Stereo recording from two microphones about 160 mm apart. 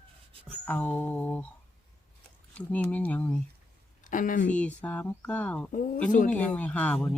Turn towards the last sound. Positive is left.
turn(degrees=10)  # may be behind; listen again after turning